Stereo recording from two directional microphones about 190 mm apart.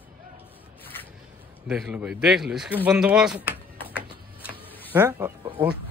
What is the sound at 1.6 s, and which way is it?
A man's voice, 5° right (ahead or behind).